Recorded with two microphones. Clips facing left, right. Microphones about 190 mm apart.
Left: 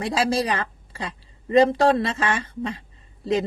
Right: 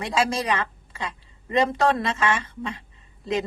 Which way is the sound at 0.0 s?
35° left (ahead or behind).